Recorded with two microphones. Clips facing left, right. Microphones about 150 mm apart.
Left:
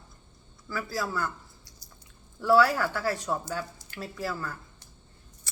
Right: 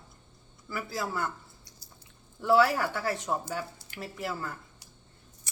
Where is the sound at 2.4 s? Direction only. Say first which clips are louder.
Left 1 dB; 20° right (ahead or behind).